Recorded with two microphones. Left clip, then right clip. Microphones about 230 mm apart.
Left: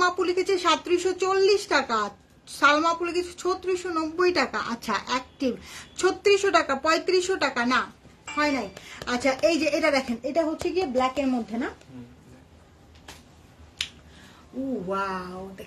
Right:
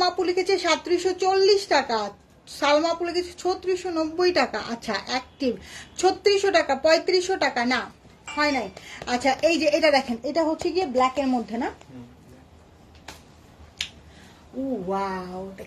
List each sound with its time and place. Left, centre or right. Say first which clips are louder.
0.0 s speech: right 1 dB; centre
14.9 s speech: even; centre